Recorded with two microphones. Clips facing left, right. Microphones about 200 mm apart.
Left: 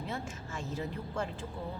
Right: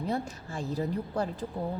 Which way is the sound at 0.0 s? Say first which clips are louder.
Right 7 dB; 35° right (ahead or behind).